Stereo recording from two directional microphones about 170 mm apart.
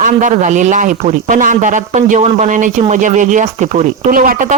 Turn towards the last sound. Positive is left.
turn(degrees=-55)  # may be behind; listen again after turning